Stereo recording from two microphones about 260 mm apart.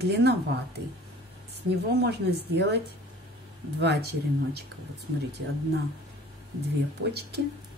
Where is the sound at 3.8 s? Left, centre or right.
Right.